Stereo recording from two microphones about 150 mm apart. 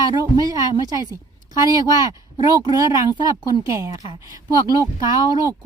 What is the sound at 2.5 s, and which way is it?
Speech, 25° right (ahead or behind).